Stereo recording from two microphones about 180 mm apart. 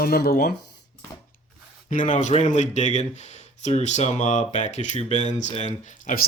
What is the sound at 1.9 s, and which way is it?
Speech, 45° left (ahead or behind).